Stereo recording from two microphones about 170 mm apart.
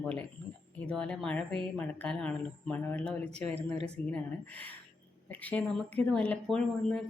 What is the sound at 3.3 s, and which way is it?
Speech, 40° right (ahead or behind).